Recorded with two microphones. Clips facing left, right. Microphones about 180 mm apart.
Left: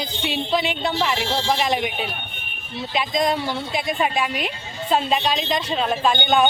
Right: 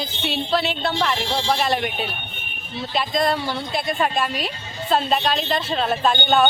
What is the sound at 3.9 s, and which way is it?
Speech, centre (ahead or behind).